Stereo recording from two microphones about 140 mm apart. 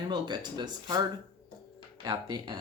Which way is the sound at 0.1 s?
30° right (ahead or behind).